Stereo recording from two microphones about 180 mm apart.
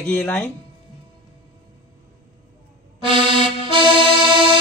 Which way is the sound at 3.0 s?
30° right (ahead or behind).